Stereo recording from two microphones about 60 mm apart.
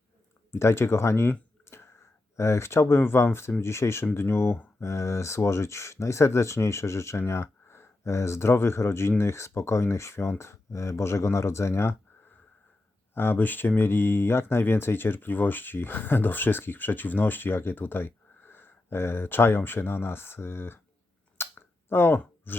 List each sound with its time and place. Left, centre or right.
0.5 s speech: left
1.6 s whispering: left
2.3 s speech: left
13.1 s speech: left
21.4 s a sound: left
21.8 s speech: left
22.5 s a sound: left